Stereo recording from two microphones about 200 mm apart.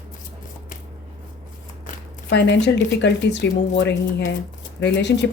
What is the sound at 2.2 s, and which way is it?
Speech, 60° left (ahead or behind).